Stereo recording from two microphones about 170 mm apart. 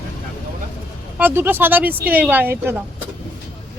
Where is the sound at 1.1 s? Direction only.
10° right (ahead or behind).